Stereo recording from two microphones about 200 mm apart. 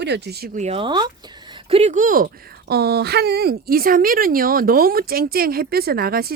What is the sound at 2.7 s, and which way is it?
A woman's voice, 55° right (ahead or behind).